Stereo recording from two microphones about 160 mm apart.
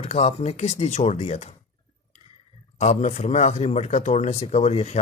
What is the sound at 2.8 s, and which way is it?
A man's voice, 45° left (ahead or behind).